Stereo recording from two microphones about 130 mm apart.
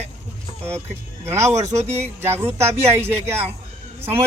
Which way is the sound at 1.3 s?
20° right (ahead or behind).